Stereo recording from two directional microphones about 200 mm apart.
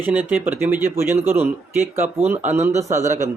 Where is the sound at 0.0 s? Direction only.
10° right (ahead or behind).